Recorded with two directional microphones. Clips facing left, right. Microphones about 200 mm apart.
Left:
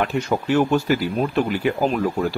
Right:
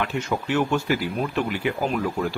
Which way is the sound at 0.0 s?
40° left (ahead or behind).